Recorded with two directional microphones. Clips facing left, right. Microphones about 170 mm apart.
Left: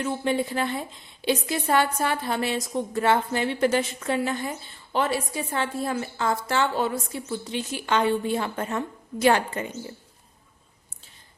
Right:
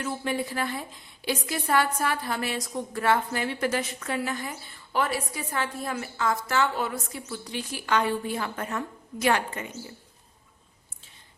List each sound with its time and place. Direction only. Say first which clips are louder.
0.0 s a woman's voice: left 4 dB; 25° left (ahead or behind)